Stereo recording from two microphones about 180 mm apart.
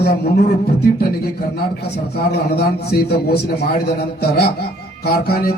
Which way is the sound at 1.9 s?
60° left (ahead or behind).